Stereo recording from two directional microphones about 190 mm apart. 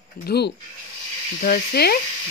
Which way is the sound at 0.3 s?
60° left (ahead or behind).